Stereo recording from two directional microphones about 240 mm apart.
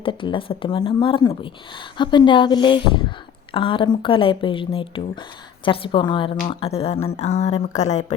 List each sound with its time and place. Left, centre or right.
0.0 s speech: left